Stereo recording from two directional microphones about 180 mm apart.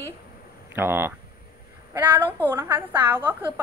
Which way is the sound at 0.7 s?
10° right (ahead or behind).